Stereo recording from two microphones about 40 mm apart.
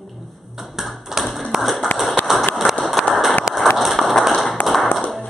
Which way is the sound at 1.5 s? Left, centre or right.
Centre.